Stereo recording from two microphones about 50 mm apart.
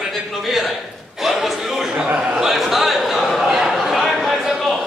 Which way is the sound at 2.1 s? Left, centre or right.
Centre.